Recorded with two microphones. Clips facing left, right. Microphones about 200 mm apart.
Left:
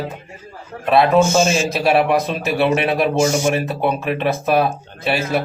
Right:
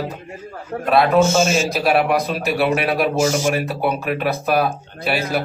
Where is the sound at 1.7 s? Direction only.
Centre (ahead or behind).